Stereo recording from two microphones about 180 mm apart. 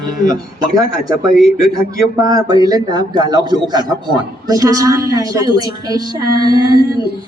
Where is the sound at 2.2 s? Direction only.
20° right (ahead or behind).